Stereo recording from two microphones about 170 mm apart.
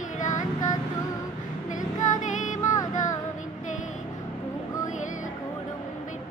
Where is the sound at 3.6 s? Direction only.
45° left (ahead or behind).